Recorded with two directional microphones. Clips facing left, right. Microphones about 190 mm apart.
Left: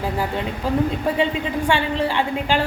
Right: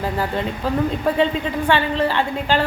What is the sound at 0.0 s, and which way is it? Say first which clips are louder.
A woman's voice: right 1 dB; 10° left (ahead or behind).